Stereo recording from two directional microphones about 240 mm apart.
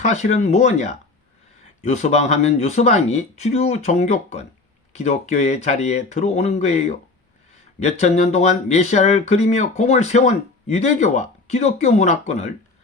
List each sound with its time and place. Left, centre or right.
0.0 s speech: left